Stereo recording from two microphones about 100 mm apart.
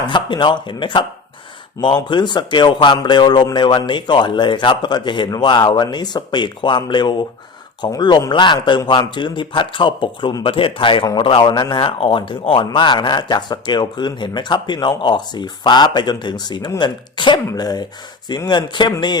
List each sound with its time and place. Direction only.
0.1 s speech: 50° left (ahead or behind)
2.0 s speech: 50° left (ahead or behind)